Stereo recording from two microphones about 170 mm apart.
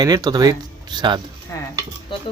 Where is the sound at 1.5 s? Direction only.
20° left (ahead or behind).